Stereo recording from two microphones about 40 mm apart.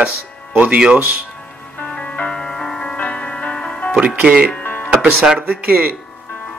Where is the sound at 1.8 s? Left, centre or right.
Left.